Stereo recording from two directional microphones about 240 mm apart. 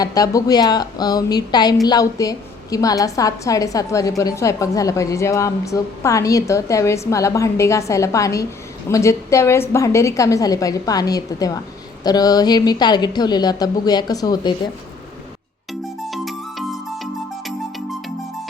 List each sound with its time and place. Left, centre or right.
0.0 s a woman's voice: centre
16.0 s music: centre